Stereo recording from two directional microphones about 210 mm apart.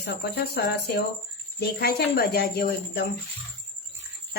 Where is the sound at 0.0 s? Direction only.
50° left (ahead or behind).